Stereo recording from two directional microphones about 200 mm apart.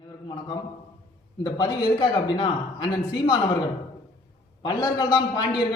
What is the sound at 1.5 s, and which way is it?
A man's voice, 20° left (ahead or behind).